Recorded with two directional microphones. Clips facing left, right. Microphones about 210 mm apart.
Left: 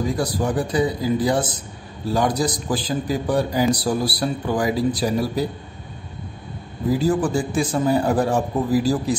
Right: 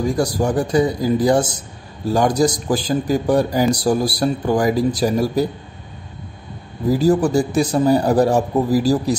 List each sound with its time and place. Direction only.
0.2 s a man's voice: 45° right (ahead or behind)
6.9 s a man's voice: 40° right (ahead or behind)